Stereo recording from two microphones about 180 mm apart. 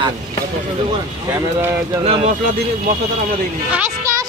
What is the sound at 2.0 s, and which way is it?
Speech, 35° right (ahead or behind).